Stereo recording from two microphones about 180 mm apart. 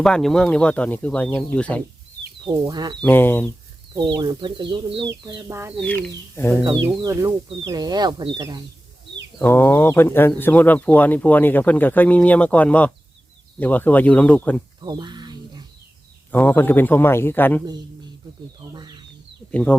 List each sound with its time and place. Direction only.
0.0 s speech: centre (ahead or behind)
2.4 s speech: 25° right (ahead or behind)
3.0 s speech: 10° left (ahead or behind)
4.0 s speech: 25° right (ahead or behind)
5.7 s speech: 5° left (ahead or behind)
7.0 s speech: 15° right (ahead or behind)
9.4 s speech: 10° left (ahead or behind)
14.8 s a sound: 25° right (ahead or behind)
16.3 s speech: 10° left (ahead or behind)
18.7 s a sound: 25° right (ahead or behind)
19.5 s speech: 5° left (ahead or behind)